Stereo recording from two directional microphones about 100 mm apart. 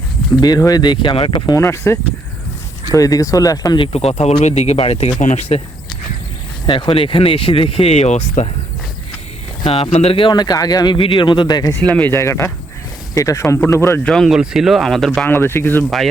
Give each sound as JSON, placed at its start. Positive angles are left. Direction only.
{"t": 0.4, "sound": "speech", "side_deg": 40}
{"t": 1.5, "sound": "speech", "side_deg": 25}
{"t": 3.8, "sound": "speech", "side_deg": 90}
{"t": 5.4, "sound": "speech", "side_deg": 90}
{"t": 6.7, "sound": "speech", "side_deg": 60}
{"t": 9.6, "sound": "speech", "side_deg": 75}
{"t": 10.3, "sound": "speech", "side_deg": 40}
{"t": 10.9, "sound": "speech", "side_deg": 60}
{"t": 11.8, "sound": "speech", "side_deg": 15}
{"t": 14.0, "sound": "speech", "side_deg": 5}
{"t": 14.3, "sound": "speech", "side_deg": -5}
{"t": 15.3, "sound": "speech", "side_deg": 25}